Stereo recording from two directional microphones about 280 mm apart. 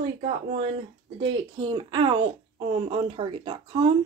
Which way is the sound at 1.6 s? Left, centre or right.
Centre.